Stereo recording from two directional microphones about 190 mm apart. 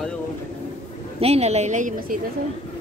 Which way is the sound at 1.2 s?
35° right (ahead or behind).